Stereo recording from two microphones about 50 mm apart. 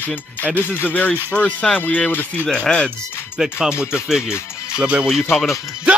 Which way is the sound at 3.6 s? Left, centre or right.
Centre.